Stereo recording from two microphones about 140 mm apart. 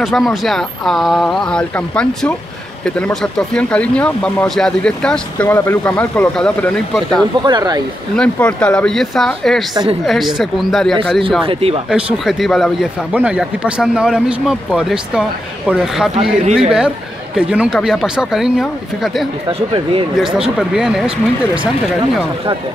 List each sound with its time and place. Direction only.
0.0 s speech: centre (ahead or behind)
7.4 s speech: 30° right (ahead or behind)
8.2 s speech: 5° left (ahead or behind)
11.4 s speech: 40° right (ahead or behind)
11.9 s speech: 5° right (ahead or behind)
19.4 s speech: 35° right (ahead or behind)
20.3 s speech: 5° right (ahead or behind)